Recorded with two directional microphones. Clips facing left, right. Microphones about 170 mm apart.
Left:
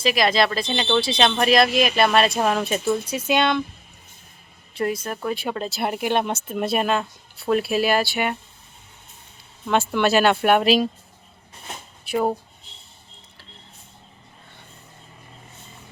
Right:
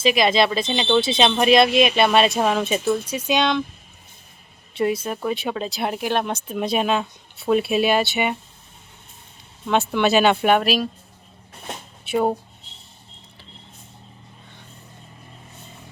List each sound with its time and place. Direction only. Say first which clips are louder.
0.0 s speech: right 2 dB; centre (ahead or behind)
5.0 s speech: right 2 dB; 5° right (ahead or behind)
9.6 s speech: right 1 dB; centre (ahead or behind)
10.6 s speech: left 3 dB; 25° left (ahead or behind)